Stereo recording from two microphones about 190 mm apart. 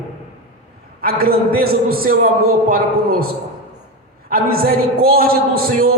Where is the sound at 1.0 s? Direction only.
50° right (ahead or behind).